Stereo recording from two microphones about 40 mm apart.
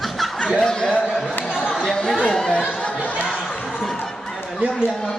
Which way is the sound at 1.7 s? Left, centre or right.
Centre.